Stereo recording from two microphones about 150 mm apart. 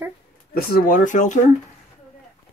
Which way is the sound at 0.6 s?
70° left (ahead or behind).